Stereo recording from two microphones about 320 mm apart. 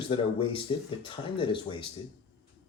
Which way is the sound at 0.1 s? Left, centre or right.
Centre.